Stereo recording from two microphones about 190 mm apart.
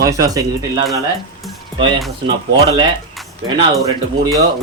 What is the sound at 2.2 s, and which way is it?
Speech, 25° right (ahead or behind).